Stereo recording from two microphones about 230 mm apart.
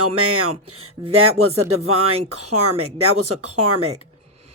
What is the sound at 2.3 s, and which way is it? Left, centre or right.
Speech, right.